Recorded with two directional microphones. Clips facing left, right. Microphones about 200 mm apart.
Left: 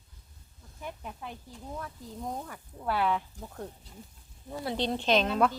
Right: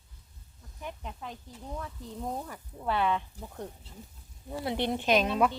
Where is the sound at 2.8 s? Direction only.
5° left (ahead or behind).